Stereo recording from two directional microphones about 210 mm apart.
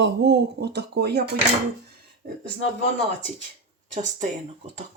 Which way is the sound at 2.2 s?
45° right (ahead or behind).